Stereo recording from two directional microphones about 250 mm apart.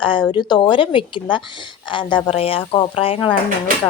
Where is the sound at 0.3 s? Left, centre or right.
Centre.